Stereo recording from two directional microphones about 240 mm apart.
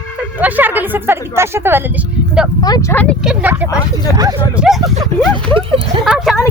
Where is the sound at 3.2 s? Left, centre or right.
Centre; by 6.0 s right.